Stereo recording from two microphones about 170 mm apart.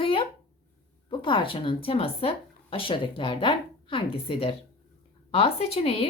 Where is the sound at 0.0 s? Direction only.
30° left (ahead or behind).